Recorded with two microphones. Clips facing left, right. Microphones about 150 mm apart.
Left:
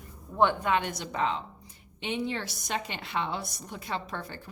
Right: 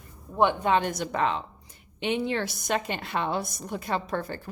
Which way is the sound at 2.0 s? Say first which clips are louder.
Right 5 dB; 65° right (ahead or behind).